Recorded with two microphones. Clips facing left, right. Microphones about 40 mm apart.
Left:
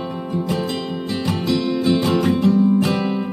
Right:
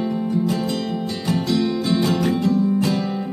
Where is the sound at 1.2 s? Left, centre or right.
Left.